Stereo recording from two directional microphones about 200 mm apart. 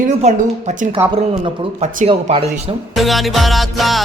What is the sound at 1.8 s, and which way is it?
Speech, 35° right (ahead or behind).